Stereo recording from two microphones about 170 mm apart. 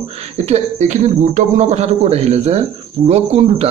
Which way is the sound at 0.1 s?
40° right (ahead or behind).